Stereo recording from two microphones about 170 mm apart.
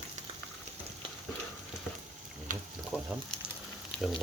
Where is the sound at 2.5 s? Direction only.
50° right (ahead or behind).